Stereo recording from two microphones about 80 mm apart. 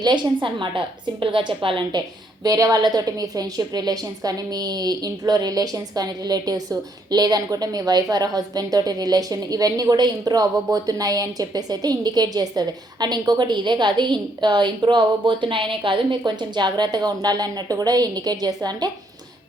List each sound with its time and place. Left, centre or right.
0.0 s a woman's voice: right